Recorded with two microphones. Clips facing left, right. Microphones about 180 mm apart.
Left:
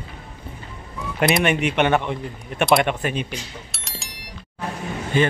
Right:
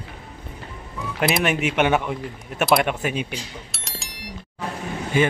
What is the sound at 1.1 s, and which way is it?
A man's voice, centre (ahead or behind).